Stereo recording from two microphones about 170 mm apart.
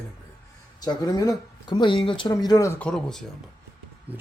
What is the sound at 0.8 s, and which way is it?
Speech, 20° left (ahead or behind).